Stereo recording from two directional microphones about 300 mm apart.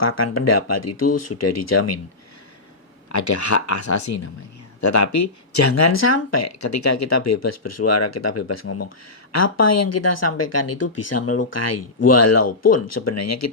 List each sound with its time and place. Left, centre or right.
0.0 s speech: left
3.1 s speech: left